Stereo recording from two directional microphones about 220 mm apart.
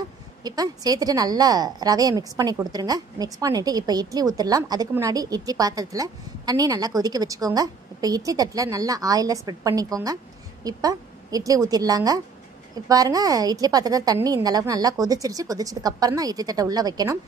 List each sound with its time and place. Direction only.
0.4 s a woman's voice: 15° right (ahead or behind)